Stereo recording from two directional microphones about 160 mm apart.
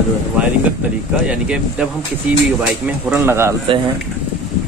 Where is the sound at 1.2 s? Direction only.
5° right (ahead or behind).